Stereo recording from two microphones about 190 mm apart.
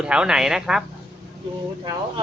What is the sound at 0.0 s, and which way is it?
Speech, 5° right (ahead or behind).